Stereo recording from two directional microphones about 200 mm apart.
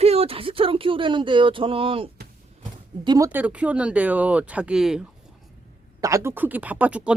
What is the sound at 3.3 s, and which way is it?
Speech, 10° right (ahead or behind).